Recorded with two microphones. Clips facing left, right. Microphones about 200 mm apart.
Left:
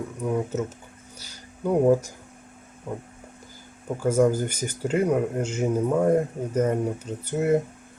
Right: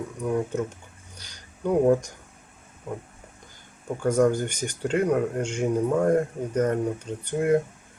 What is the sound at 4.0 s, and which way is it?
Speech, 5° left (ahead or behind).